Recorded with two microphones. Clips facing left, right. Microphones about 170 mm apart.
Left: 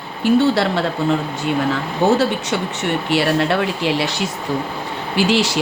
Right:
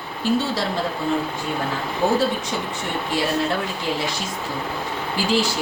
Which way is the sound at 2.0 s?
90° left.